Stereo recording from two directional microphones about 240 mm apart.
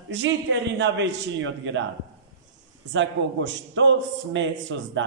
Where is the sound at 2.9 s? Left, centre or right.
Right.